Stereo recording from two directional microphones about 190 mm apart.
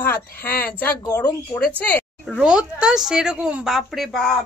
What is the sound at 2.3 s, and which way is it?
A woman's voice, 5° right (ahead or behind).